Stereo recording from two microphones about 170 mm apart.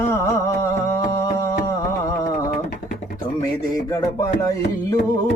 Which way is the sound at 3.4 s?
20° left (ahead or behind).